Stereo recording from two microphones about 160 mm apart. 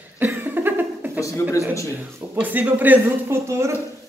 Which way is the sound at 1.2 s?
20° left (ahead or behind).